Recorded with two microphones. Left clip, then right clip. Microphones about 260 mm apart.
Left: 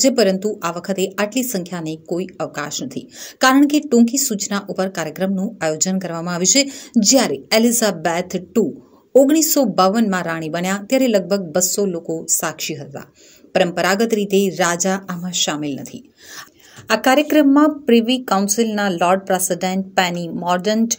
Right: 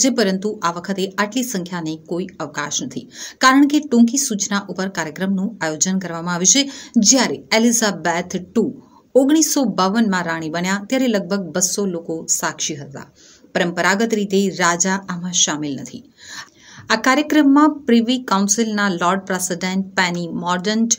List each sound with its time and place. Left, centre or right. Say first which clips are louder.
0.0 s speech: left 3 dB; centre
16.8 s speech: left 1 dB; centre